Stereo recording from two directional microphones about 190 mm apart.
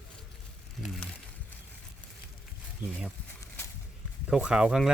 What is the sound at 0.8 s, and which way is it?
Speech, centre (ahead or behind).